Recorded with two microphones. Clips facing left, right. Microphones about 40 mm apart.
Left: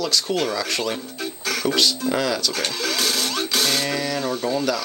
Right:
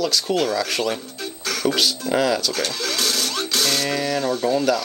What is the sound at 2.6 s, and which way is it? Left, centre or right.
Music, centre.